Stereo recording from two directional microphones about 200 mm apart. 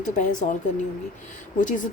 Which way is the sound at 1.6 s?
40° left (ahead or behind).